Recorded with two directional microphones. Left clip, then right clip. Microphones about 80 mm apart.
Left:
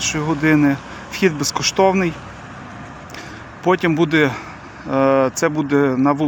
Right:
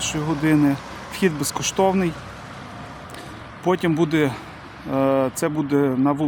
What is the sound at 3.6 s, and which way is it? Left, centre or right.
Speech, right.